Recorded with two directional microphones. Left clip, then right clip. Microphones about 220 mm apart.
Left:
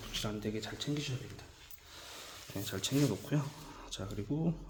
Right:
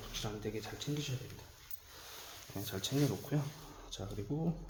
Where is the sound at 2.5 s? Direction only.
20° left (ahead or behind).